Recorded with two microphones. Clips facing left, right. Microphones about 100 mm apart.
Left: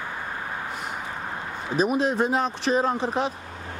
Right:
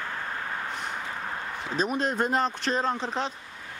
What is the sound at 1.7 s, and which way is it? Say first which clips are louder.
Speech: left 5 dB; 5° left (ahead or behind).